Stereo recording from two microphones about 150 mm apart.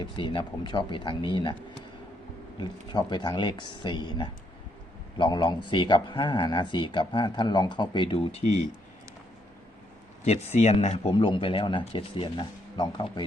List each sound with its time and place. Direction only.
0.0 s speech: 30° left (ahead or behind)
2.6 s speech: 30° left (ahead or behind)
10.2 s speech: 45° left (ahead or behind); by 13.2 s 30° left (ahead or behind)